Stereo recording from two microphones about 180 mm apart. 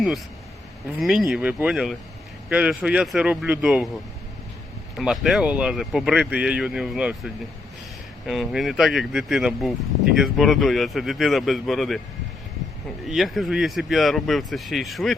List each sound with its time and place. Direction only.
0.9 s speech: centre (ahead or behind)
4.9 s speech: centre (ahead or behind)
8.3 s speech: centre (ahead or behind)
13.1 s speech: centre (ahead or behind)